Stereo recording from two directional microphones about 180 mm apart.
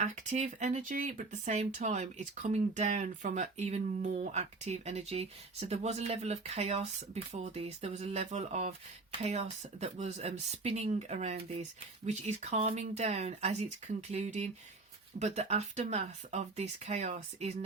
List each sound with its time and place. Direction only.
0.0 s speech: 40° right (ahead or behind)